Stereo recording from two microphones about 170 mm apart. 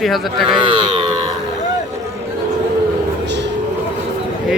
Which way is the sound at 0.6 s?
30° right (ahead or behind).